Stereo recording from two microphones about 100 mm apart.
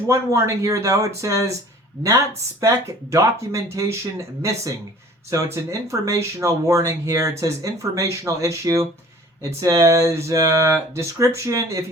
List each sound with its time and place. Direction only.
0.1 s speech: 30° right (ahead or behind)
5.5 s speech: 30° right (ahead or behind)